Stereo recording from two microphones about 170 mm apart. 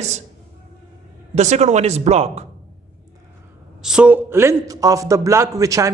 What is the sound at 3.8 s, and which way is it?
A man's voice, 5° right (ahead or behind).